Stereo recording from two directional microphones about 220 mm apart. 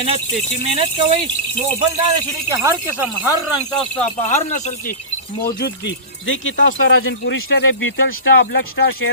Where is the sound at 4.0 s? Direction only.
30° left (ahead or behind).